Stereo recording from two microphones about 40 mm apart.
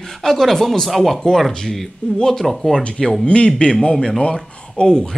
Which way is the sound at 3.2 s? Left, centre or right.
Left.